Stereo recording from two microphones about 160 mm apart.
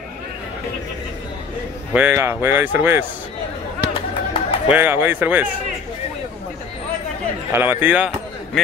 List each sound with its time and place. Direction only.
2.0 s speech: 15° right (ahead or behind)
4.3 s music: 35° left (ahead or behind)
4.7 s speech: 15° right (ahead or behind)
7.5 s speech: 15° right (ahead or behind)